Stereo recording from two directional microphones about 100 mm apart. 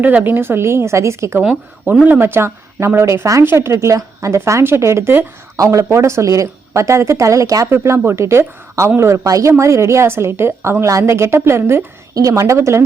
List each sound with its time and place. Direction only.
0.0 s a woman's voice: 15° right (ahead or behind)
1.4 s a woman's voice: 15° right (ahead or behind)